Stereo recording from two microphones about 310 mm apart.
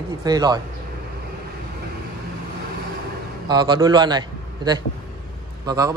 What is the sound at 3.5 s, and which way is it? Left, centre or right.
A man's voice, centre.